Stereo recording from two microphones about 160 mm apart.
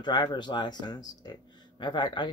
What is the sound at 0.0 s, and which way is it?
Speech, 30° left (ahead or behind).